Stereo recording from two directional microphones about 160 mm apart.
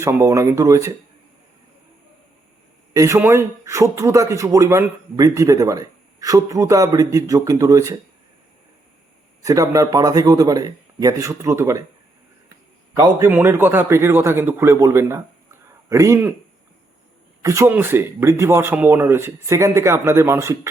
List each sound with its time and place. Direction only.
0.0 s speech: 20° right (ahead or behind)
2.9 s speech: 20° right (ahead or behind)
9.4 s speech: 20° right (ahead or behind)
12.9 s a man's voice: 20° right (ahead or behind)
17.4 s speech: 20° right (ahead or behind)